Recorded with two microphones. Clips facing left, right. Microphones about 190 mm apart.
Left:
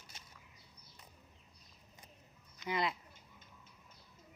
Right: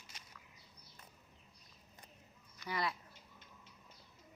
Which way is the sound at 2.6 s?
20° left (ahead or behind).